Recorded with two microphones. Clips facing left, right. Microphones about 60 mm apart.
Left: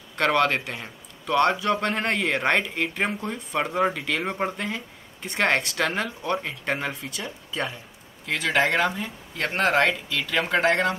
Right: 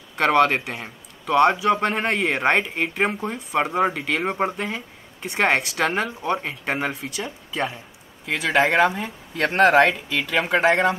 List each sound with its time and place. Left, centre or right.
0.1 s speech: centre
5.2 s speech: centre
8.5 s speech: right